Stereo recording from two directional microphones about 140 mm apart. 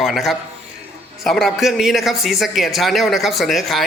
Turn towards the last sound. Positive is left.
turn(degrees=0)  # may be behind; listen again after turning